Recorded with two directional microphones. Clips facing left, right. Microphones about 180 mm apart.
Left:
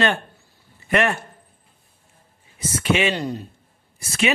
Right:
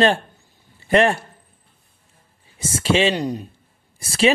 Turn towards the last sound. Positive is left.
turn(degrees=-30)  # may be behind; listen again after turning